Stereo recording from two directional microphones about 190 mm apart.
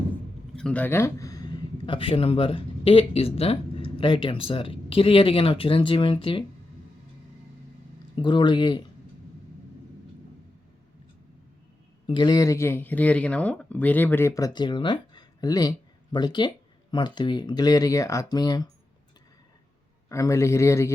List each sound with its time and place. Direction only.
0.5 s speech: 5° left (ahead or behind); by 6.4 s 30° left (ahead or behind)
8.1 s speech: 25° left (ahead or behind)
12.0 s speech: 25° left (ahead or behind)
20.1 s speech: 15° left (ahead or behind)